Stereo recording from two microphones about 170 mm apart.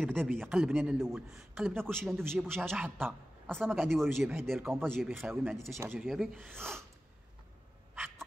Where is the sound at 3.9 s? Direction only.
Centre (ahead or behind).